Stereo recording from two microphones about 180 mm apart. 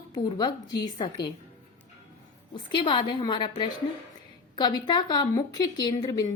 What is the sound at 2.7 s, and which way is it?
Speech, 25° left (ahead or behind).